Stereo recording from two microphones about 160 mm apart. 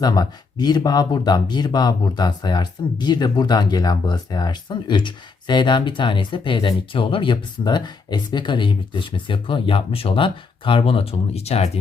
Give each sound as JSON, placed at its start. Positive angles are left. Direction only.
{"t": 0.0, "sound": "speech", "side_deg": 25}